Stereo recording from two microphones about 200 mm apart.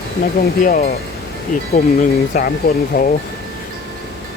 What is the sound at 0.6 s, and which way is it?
Speech, 40° left (ahead or behind).